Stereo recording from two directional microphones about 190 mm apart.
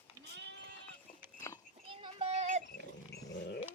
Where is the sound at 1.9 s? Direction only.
30° right (ahead or behind).